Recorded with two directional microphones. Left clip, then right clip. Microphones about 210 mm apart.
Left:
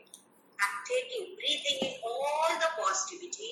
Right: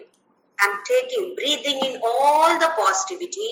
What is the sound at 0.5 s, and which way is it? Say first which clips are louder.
Speech: right 11 dB; 50° right (ahead or behind).